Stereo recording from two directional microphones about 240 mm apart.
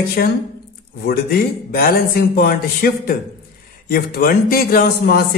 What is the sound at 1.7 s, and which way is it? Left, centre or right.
A man's voice, left.